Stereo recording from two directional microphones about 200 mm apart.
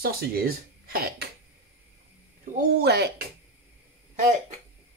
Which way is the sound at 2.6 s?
55° right (ahead or behind).